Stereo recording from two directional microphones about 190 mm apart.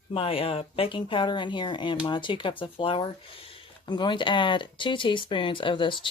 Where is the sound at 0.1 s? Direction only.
30° left (ahead or behind).